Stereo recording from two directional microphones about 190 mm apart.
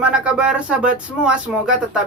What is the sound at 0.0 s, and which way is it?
Speech, 5° right (ahead or behind).